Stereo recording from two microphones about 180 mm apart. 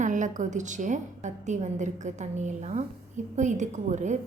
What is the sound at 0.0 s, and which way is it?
A woman's voice, 45° right (ahead or behind).